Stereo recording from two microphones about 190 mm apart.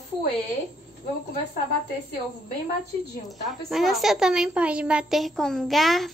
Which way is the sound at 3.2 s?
Centre (ahead or behind).